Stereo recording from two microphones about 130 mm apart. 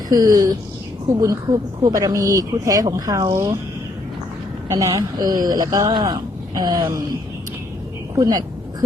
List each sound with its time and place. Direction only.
0.1 s speech: 30° right (ahead or behind)
4.7 s speech: 25° right (ahead or behind)
8.2 s speech: 30° right (ahead or behind)